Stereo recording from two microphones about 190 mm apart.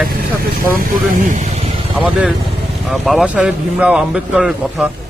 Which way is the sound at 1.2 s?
40° right (ahead or behind).